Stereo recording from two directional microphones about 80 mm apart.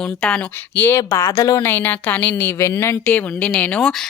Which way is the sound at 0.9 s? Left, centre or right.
Left.